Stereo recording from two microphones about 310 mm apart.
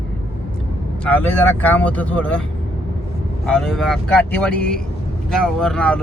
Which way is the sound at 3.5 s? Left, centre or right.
Centre.